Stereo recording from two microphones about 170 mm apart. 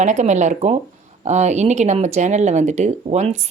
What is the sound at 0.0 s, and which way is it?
A woman's voice, 45° right (ahead or behind).